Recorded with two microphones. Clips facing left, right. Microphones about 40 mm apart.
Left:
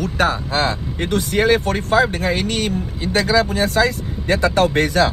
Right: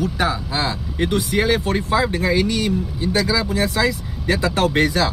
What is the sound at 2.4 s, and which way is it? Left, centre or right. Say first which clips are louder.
Speech: right 1 dB; left.